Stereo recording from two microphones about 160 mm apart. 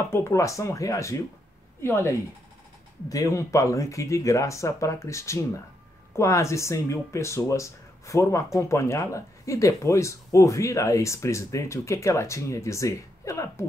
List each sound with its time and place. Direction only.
0.1 s speech: 15° left (ahead or behind)